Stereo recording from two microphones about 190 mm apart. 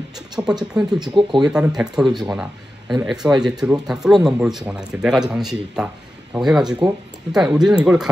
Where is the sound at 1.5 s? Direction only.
5° right (ahead or behind).